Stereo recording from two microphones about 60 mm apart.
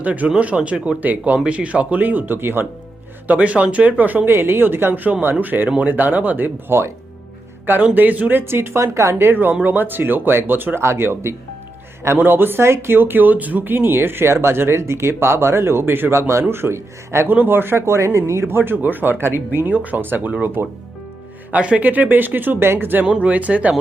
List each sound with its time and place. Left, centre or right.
0.0 s speech: right
3.2 s speech: right
4.3 s speech: right
7.8 s speech: right
8.8 s speech: right
9.1 s speech: right
10.8 s speech: right
17.2 s speech: right
18.4 s speech: right
20.6 s speech: right
21.5 s speech: right
23.0 s speech: centre